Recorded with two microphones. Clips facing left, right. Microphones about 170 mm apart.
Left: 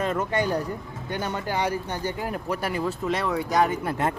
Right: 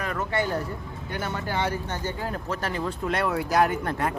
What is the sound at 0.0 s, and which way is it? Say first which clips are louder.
A man's voice: left 3 dB; 20° left (ahead or behind).